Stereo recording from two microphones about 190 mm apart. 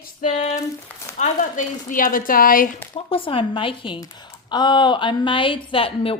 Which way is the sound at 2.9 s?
30° left (ahead or behind).